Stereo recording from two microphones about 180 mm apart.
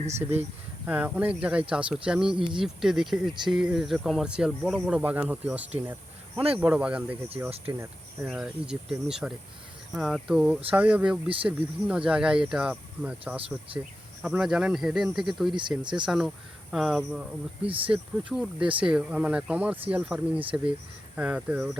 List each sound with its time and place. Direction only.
0.2 s speech: 10° right (ahead or behind)
2.3 s speech: 25° right (ahead or behind)
2.6 s speech: centre (ahead or behind)
15.8 s speech: 25° right (ahead or behind)
16.0 s speech: centre (ahead or behind)